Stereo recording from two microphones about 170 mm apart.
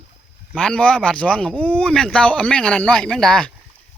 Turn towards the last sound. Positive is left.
turn(degrees=5)  # may be behind; listen again after turning